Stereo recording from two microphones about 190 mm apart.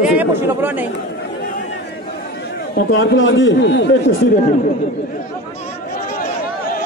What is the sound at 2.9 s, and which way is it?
A man's voice, 80° left.